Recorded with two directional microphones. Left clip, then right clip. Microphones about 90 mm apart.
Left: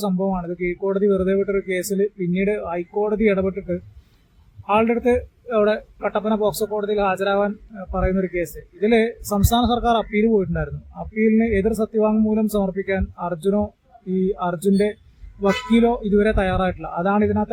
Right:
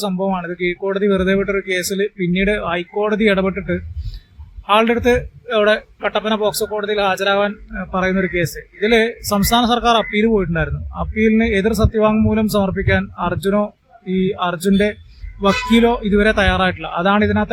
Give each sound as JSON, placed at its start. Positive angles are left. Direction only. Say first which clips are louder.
{"t": 0.3, "sound": "a man's voice", "louder": "right 4 dB", "side_deg": 15}